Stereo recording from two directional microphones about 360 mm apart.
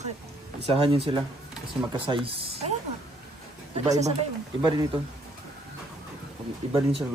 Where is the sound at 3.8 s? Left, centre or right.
Centre.